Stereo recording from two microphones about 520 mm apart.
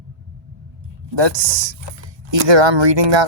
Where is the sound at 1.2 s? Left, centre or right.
Right.